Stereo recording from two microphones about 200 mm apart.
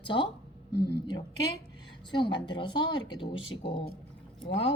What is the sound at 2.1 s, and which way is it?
A woman's voice, 25° left (ahead or behind).